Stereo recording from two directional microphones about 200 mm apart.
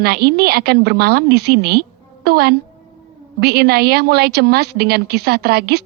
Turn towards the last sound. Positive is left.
turn(degrees=-55)  # may be behind; listen again after turning